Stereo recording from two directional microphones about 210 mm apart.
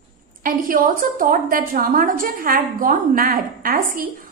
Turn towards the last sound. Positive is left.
turn(degrees=-40)  # may be behind; listen again after turning